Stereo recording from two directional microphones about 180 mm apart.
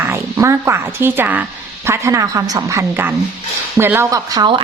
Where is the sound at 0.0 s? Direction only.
15° right (ahead or behind).